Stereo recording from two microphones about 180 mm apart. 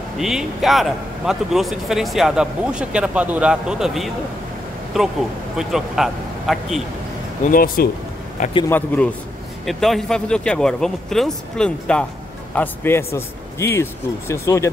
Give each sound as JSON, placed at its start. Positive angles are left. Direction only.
{"t": 0.2, "sound": "a man's voice", "side_deg": 0}
{"t": 7.4, "sound": "speech", "side_deg": 50}
{"t": 8.6, "sound": "a man's voice", "side_deg": 10}